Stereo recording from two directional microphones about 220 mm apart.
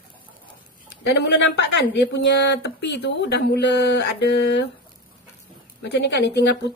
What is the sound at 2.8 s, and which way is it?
Speech, 50° left (ahead or behind).